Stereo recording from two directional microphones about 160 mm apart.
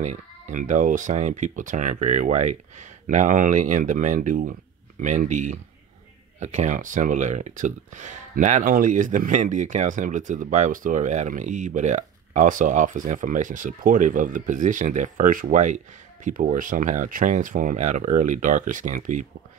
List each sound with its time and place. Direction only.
0.0 s speech: 50° right (ahead or behind)